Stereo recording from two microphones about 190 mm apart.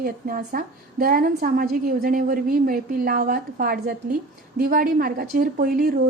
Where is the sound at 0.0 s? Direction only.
50° right (ahead or behind).